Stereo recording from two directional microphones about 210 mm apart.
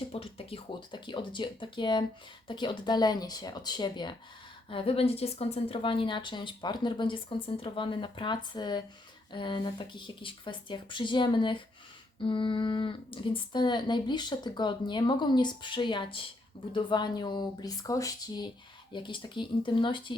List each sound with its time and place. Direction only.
0.1 s a woman's voice: 25° left (ahead or behind)